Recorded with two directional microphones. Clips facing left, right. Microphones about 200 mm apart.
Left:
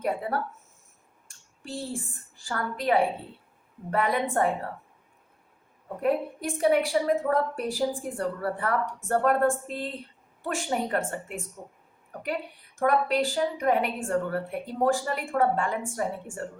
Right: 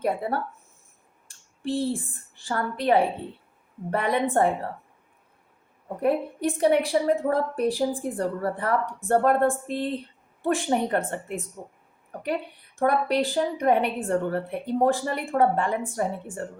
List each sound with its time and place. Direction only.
0.0 s a woman's voice: 35° right (ahead or behind)
1.6 s a woman's voice: 35° right (ahead or behind)
6.0 s a woman's voice: 35° right (ahead or behind)
12.8 s a woman's voice: 35° right (ahead or behind)